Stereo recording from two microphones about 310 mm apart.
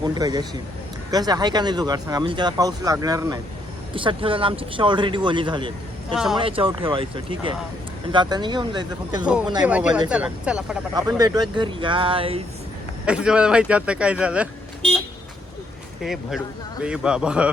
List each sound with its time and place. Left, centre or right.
0.0 s speech: centre
9.2 s speech: centre
13.1 s speech: centre
16.0 s speech: centre